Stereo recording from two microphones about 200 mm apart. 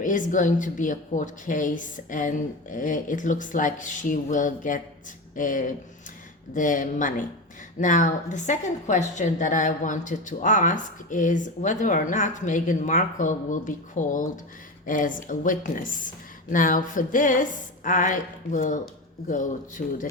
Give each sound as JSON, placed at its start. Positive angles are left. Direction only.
{"t": 0.0, "sound": "a woman's voice", "side_deg": 40}